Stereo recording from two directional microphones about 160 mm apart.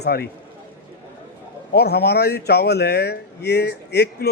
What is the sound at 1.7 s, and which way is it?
Speech, 90° left.